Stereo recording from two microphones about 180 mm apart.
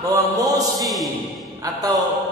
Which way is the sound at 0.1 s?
20° right (ahead or behind).